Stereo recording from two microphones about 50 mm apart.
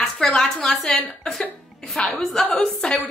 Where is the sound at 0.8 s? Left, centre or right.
Left.